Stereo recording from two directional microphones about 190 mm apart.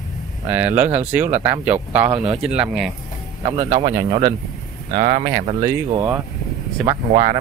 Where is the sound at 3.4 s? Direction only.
35° right (ahead or behind).